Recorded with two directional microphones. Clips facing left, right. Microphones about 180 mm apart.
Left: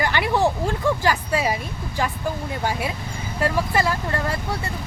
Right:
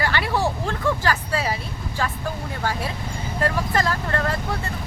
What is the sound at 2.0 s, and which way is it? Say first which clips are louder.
Speech: left 2 dB; 15° left (ahead or behind).